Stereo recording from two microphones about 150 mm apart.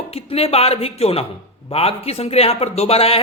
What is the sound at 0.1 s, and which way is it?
A woman's voice, 40° left (ahead or behind).